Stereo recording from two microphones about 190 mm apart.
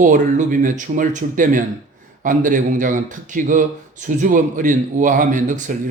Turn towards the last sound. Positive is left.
turn(degrees=-40)  # may be behind; listen again after turning